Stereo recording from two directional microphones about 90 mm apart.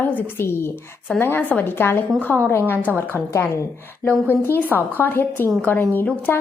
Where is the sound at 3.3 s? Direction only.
30° left (ahead or behind).